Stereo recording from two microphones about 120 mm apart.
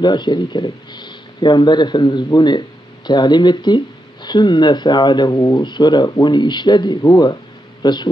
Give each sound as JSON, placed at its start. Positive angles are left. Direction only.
{"t": 0.0, "sound": "speech", "side_deg": 40}